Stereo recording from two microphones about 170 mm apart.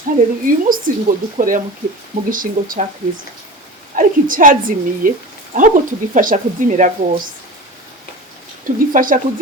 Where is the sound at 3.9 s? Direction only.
50° right (ahead or behind).